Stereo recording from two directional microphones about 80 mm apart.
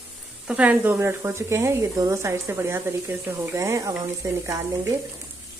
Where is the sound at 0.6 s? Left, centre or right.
Centre.